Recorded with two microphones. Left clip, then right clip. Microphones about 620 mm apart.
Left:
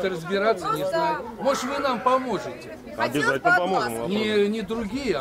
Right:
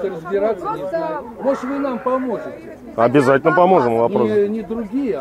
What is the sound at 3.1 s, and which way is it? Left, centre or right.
Speech, right.